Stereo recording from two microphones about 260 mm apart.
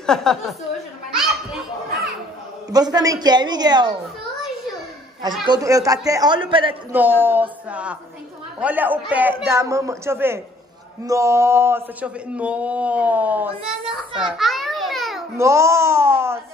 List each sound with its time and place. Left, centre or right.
0.0 s a man's voice: centre
2.7 s a man's voice: centre
5.4 s a man's voice: centre
6.7 s a man's voice: centre
15.3 s a man's voice: centre